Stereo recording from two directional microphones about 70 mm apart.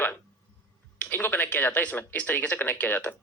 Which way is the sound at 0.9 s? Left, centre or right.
Left.